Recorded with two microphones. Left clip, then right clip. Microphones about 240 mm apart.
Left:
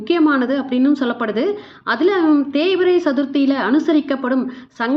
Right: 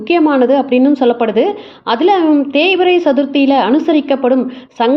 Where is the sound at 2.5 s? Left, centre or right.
Centre.